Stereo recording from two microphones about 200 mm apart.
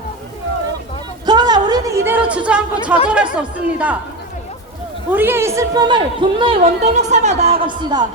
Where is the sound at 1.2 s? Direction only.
20° right (ahead or behind).